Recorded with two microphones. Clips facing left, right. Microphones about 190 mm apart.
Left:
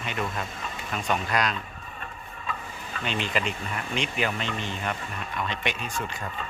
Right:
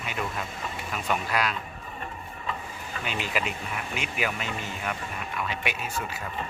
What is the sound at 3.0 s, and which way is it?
A man's voice, 5° right (ahead or behind).